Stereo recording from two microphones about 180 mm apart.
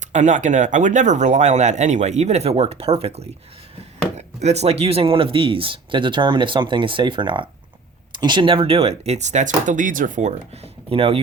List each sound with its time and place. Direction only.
0.0 s speech: 40° right (ahead or behind)
4.4 s speech: 35° right (ahead or behind)